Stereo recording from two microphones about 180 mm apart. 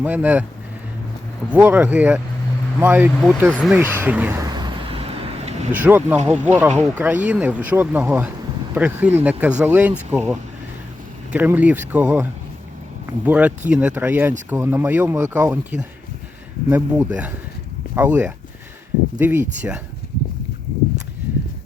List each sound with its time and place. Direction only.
0.0 s speech: 10° right (ahead or behind)
1.5 s speech: 10° right (ahead or behind)
3.7 s vehicle: 10° right (ahead or behind); by 5.6 s 35° right (ahead or behind)
5.7 s speech: 10° right (ahead or behind)